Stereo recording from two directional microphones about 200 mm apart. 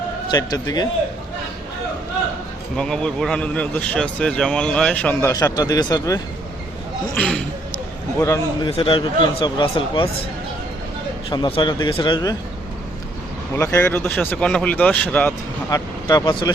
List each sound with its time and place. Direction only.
0.3 s speech: 20° left (ahead or behind)
2.7 s speech: 5° left (ahead or behind)
5.3 s speech: 20° left (ahead or behind)
7.2 s speech: 5° left (ahead or behind)
8.2 s speech: 15° left (ahead or behind)
8.7 s speech: 25° left (ahead or behind)
11.3 s speech: 25° left (ahead or behind)
13.6 s speech: 15° left (ahead or behind)
15.7 s speech: 20° left (ahead or behind)